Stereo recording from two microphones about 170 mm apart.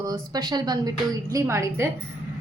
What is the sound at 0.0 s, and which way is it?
A woman's voice, 20° right (ahead or behind).